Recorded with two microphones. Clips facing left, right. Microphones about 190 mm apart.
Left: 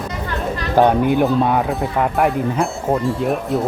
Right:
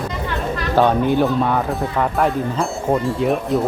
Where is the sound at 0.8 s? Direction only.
15° left (ahead or behind).